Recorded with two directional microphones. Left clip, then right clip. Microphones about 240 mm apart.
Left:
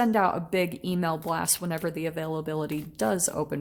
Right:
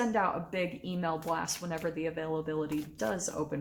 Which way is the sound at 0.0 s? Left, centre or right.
Left.